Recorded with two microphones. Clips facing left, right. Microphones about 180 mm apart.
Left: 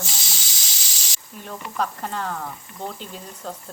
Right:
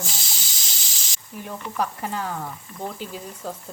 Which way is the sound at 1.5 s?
10° right (ahead or behind).